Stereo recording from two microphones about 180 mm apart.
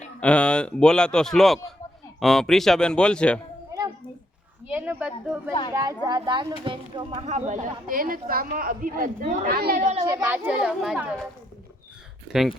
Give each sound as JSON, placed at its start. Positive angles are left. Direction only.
{"t": 0.2, "sound": "speech", "side_deg": 5}
{"t": 4.7, "sound": "a woman's voice", "side_deg": -10}
{"t": 5.7, "sound": "a woman's voice", "side_deg": -20}
{"t": 10.2, "sound": "speech", "side_deg": -10}
{"t": 12.3, "sound": "speech", "side_deg": 0}